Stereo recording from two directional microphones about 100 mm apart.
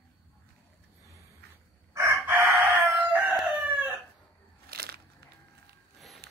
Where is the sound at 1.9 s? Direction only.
25° right (ahead or behind).